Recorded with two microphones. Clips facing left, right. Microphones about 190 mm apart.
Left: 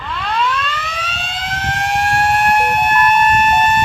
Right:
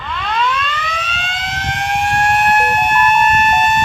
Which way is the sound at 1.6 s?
Centre (ahead or behind).